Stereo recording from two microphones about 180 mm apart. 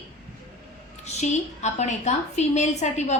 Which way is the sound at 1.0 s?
40° left (ahead or behind).